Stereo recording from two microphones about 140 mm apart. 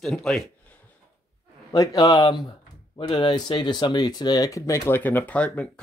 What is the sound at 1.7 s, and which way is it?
Speech, 25° left (ahead or behind).